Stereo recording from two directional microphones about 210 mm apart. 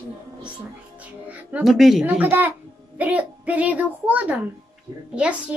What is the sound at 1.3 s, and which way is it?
A woman's voice, 5° right (ahead or behind).